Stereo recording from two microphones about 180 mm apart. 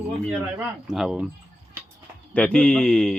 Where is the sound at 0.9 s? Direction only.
Centre (ahead or behind).